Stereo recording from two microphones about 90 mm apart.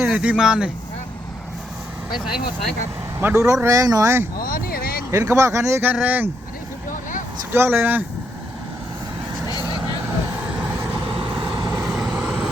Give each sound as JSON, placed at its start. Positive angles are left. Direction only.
{"t": 0.0, "sound": "speech", "side_deg": -10}
{"t": 2.1, "sound": "speech", "side_deg": 0}
{"t": 3.2, "sound": "speech", "side_deg": -25}
{"t": 3.4, "sound": "speech", "side_deg": -35}
{"t": 5.2, "sound": "speech", "side_deg": -30}
{"t": 5.9, "sound": "speech", "side_deg": -20}
{"t": 7.5, "sound": "speech", "side_deg": -25}
{"t": 10.4, "sound": "vehicle", "side_deg": -15}
{"t": 10.9, "sound": "vehicle", "side_deg": -70}
{"t": 11.5, "sound": "vehicle", "side_deg": -45}
{"t": 12.1, "sound": "vehicle", "side_deg": -10}